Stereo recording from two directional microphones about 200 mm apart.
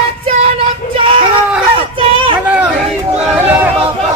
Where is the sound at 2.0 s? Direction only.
25° right (ahead or behind).